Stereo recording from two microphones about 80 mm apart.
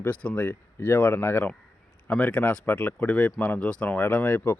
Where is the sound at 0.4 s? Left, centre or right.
Left.